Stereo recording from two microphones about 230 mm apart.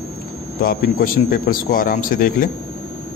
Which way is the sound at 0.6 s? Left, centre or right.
Left.